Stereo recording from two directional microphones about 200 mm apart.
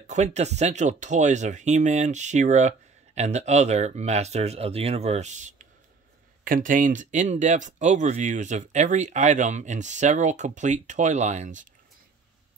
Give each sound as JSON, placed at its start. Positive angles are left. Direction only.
{"t": 0.0, "sound": "speech", "side_deg": -35}